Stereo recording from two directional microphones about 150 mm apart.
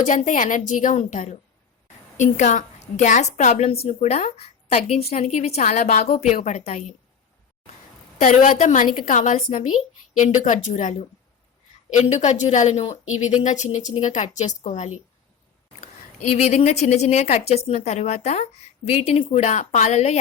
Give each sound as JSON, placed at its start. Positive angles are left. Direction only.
{"t": 0.0, "sound": "a woman's voice", "side_deg": 55}
{"t": 8.2, "sound": "a woman's voice", "side_deg": 65}